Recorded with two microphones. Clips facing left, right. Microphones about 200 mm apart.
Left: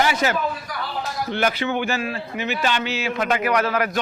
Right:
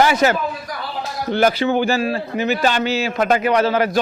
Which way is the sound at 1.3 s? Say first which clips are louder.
Right 7 dB; 35° right (ahead or behind).